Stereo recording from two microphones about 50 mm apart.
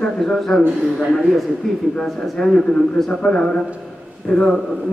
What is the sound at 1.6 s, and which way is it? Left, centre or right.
A man's voice, centre.